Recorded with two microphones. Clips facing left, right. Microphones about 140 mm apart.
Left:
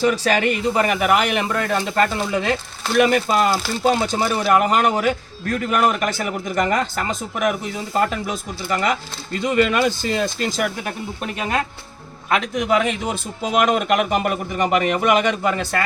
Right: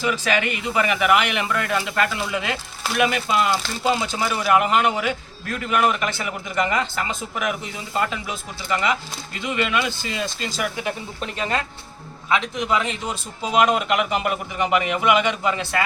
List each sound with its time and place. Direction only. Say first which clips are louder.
0.0 s speech: left 5 dB; 40° left (ahead or behind)
12.3 s a man's voice: left 3 dB; 55° left (ahead or behind)